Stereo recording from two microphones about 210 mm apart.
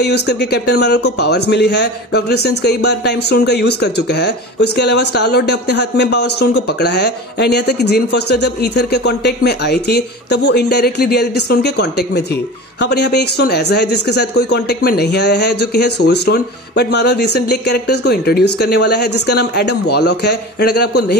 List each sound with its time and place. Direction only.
0.0 s speech: 50° left (ahead or behind)